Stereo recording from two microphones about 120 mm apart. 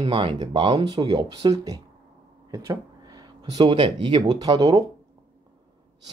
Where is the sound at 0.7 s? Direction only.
35° right (ahead or behind).